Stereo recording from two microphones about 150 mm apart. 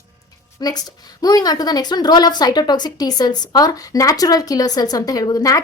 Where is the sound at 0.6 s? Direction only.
25° left (ahead or behind).